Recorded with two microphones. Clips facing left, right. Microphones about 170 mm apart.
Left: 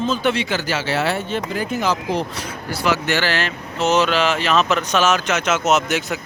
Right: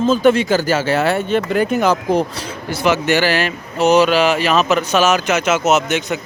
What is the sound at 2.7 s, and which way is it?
Speech, 20° right (ahead or behind).